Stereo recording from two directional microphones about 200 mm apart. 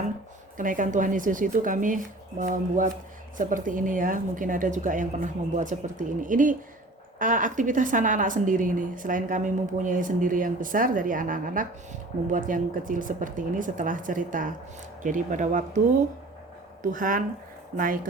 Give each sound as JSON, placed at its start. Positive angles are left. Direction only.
{"t": 0.5, "sound": "a woman's voice", "side_deg": -40}
{"t": 16.8, "sound": "a woman's voice", "side_deg": -40}